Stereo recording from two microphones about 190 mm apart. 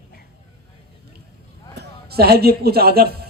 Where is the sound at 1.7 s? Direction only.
55° right (ahead or behind).